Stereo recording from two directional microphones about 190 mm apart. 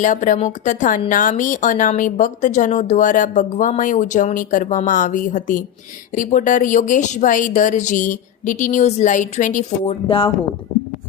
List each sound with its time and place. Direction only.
0.0 s a woman's voice: 40° left (ahead or behind)
10.1 s speech: 30° left (ahead or behind)